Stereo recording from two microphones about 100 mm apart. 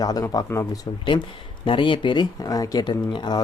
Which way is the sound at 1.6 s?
55° left (ahead or behind).